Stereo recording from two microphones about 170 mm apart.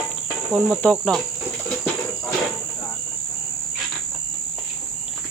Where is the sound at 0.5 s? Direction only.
Centre (ahead or behind).